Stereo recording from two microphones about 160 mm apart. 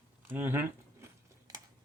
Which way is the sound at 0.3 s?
15° right (ahead or behind).